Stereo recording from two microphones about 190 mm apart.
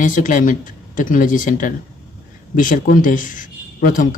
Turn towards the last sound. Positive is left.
turn(degrees=45)  # may be behind; listen again after turning